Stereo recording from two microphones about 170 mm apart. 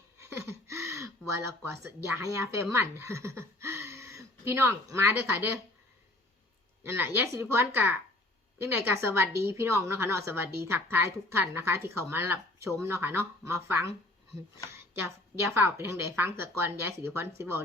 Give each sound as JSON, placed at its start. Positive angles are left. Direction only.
{"t": 0.2, "sound": "speech", "side_deg": -15}
{"t": 6.8, "sound": "a woman's voice", "side_deg": -15}
{"t": 15.5, "sound": "a woman's voice", "side_deg": -15}